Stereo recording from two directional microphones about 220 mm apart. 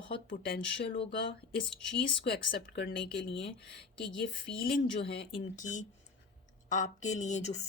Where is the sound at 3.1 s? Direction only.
25° left (ahead or behind).